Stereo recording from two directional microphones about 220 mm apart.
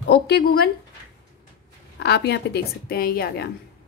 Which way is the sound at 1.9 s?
50° left (ahead or behind).